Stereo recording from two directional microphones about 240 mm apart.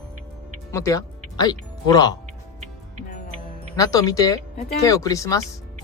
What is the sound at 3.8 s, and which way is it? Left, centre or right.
Speech, centre.